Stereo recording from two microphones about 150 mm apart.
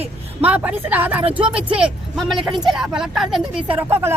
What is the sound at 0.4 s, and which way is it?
Speech, 10° right (ahead or behind).